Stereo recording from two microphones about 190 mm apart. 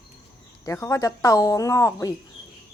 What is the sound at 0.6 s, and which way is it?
A woman's voice, 15° left (ahead or behind).